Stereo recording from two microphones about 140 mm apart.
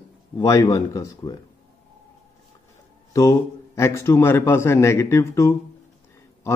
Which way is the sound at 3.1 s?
25° left (ahead or behind).